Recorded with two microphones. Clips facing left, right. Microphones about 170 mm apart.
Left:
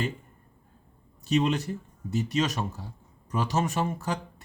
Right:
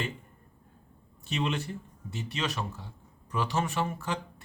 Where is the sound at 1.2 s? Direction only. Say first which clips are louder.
Left 6 dB; 40° left (ahead or behind).